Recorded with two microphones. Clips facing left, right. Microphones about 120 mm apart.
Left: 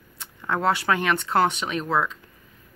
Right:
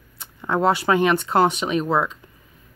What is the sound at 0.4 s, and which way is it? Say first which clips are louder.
Speech: right 4 dB; 20° right (ahead or behind).